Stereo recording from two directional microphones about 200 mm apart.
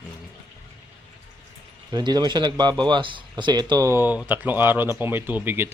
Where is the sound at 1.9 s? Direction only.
20° right (ahead or behind).